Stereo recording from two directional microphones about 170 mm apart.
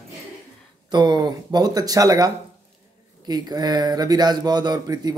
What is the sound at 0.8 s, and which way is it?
A man's voice, 25° right (ahead or behind).